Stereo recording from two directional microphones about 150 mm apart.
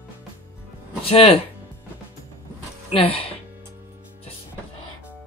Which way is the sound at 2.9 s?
40° left (ahead or behind).